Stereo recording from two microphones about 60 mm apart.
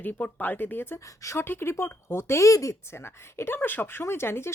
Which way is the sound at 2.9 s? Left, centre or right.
Left.